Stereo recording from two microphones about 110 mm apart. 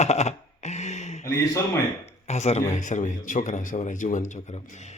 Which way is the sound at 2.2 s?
90° left.